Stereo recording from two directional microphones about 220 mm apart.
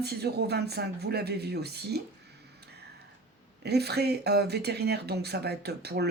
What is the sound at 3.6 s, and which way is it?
Speech, 45° right (ahead or behind).